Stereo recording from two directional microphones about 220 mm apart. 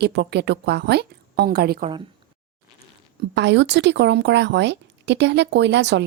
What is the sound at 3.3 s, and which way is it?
Speech, 50° right (ahead or behind).